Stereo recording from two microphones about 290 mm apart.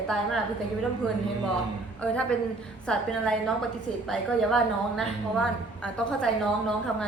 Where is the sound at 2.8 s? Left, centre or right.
Centre.